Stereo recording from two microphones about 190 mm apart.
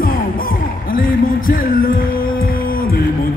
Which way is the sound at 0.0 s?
50° left (ahead or behind).